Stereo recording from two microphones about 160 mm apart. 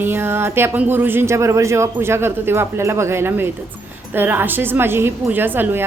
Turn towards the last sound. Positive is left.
turn(degrees=-10)  # may be behind; listen again after turning